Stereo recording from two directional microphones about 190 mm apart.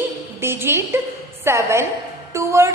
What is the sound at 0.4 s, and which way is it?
A woman's voice, 10° right (ahead or behind).